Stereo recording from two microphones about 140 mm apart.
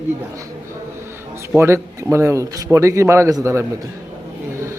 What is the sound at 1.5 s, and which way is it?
Speech, 20° right (ahead or behind).